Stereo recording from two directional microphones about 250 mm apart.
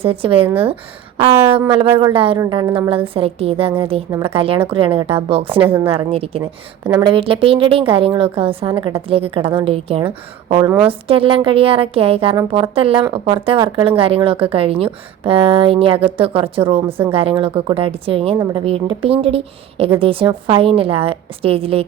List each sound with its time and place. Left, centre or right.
0.0 s a woman's voice: right
6.4 s a woman's voice: centre
7.1 s a woman's voice: right